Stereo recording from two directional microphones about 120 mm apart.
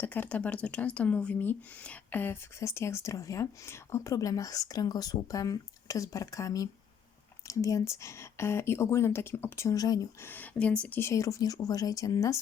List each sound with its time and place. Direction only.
0.0 s speech: 15° left (ahead or behind); by 10.1 s 30° left (ahead or behind)
10.2 s speech: 15° left (ahead or behind)